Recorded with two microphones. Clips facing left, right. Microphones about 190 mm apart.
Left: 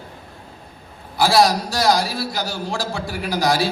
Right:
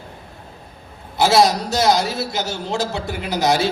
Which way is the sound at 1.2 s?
20° right (ahead or behind).